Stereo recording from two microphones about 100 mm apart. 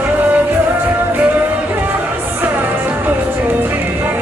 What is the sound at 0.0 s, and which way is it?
Music, 15° right (ahead or behind).